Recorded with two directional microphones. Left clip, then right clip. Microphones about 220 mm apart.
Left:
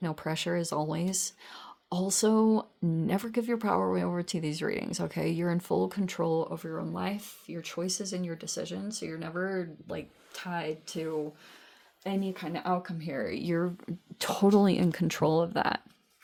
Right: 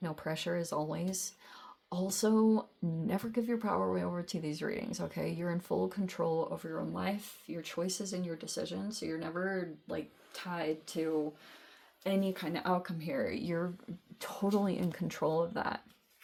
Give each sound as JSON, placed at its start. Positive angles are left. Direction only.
{"t": 0.0, "sound": "speech", "side_deg": 30}
{"t": 12.0, "sound": "speech", "side_deg": 10}
{"t": 14.2, "sound": "speech", "side_deg": 45}